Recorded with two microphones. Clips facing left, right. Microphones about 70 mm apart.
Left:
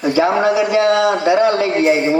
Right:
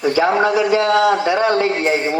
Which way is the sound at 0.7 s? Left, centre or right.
Right.